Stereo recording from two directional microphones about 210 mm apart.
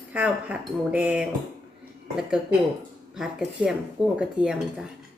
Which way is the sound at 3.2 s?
5° right (ahead or behind).